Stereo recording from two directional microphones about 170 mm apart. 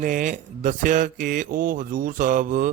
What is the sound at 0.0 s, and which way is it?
Speech, 50° right (ahead or behind).